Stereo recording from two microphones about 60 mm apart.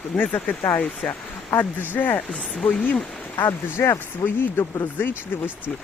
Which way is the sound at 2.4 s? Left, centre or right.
Centre.